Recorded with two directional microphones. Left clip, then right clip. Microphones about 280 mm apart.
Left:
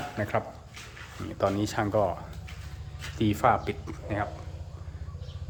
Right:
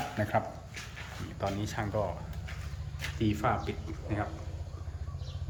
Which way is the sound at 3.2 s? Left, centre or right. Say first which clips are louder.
Left 7 dB; centre.